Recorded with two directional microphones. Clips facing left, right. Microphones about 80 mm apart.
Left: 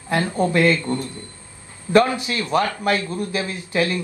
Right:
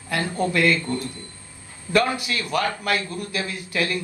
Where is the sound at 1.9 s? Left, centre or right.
Left.